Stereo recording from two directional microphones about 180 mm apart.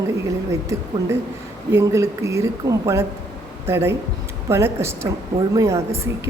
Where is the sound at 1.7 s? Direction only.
15° right (ahead or behind).